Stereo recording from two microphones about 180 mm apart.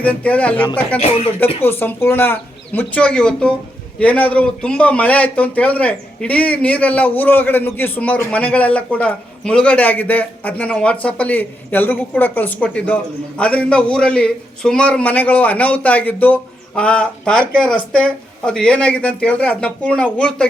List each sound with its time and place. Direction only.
0.0 s a man's voice: 5° left (ahead or behind)
0.9 s speech: 35° left (ahead or behind)
1.6 s a man's voice: 10° left (ahead or behind)